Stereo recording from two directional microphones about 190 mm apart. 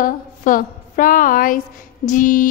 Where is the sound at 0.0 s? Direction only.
45° left (ahead or behind).